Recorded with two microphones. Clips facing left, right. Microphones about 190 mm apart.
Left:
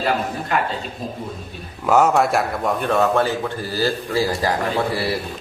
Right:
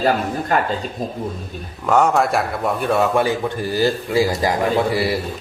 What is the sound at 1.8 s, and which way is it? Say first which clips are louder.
A man's voice: even; 5° left (ahead or behind).